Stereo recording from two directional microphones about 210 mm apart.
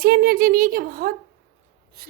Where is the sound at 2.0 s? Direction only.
45° right (ahead or behind).